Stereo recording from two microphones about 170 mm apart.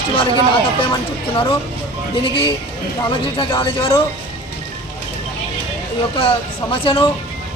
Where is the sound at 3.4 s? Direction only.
30° left (ahead or behind).